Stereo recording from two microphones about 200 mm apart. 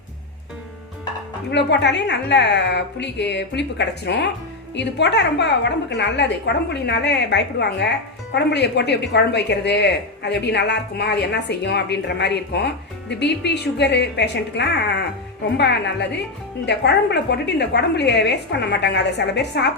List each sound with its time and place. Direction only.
1.5 s a woman's voice: 60° left (ahead or behind)